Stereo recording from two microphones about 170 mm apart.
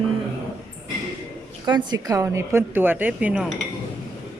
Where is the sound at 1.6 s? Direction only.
25° right (ahead or behind); by 3.5 s 5° right (ahead or behind).